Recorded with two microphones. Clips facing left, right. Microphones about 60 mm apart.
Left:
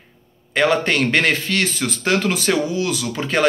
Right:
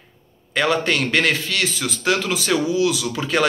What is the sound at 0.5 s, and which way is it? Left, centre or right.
A man's voice, left.